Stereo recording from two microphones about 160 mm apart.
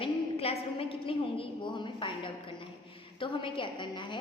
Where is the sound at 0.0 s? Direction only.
35° left (ahead or behind).